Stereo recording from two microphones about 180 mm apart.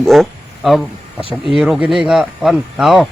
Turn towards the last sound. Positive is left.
turn(degrees=0)  # may be behind; listen again after turning